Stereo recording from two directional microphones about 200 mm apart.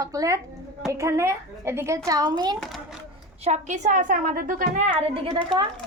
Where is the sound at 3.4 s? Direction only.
35° right (ahead or behind).